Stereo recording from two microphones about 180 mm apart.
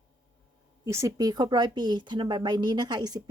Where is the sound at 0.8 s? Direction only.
15° right (ahead or behind).